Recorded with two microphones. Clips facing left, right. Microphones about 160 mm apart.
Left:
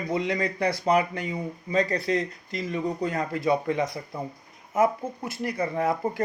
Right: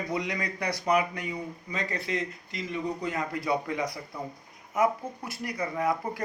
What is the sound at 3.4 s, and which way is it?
Speech, 25° left (ahead or behind).